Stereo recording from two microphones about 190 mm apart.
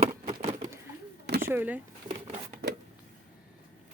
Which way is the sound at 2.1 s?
30° right (ahead or behind).